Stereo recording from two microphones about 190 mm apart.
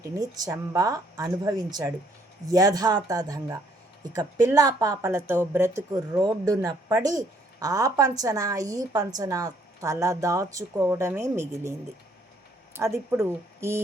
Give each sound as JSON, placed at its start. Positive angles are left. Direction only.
{"t": 0.2, "sound": "a woman's voice", "side_deg": -20}
{"t": 12.7, "sound": "a woman's voice", "side_deg": -15}